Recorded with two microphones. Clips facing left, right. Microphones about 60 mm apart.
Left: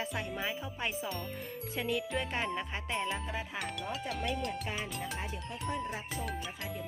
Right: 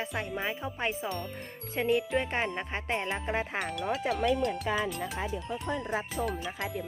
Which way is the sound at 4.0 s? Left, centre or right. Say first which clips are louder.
Right 9 dB; right.